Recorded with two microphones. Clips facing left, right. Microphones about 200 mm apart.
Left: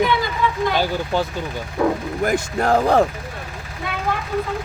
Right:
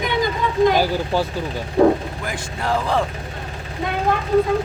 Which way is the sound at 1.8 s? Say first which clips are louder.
Right 6 dB; 30° right (ahead or behind).